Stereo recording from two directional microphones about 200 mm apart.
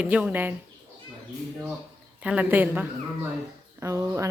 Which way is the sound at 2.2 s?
5° right (ahead or behind).